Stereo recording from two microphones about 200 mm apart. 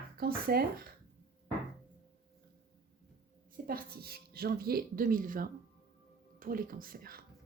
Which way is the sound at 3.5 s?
45° right (ahead or behind).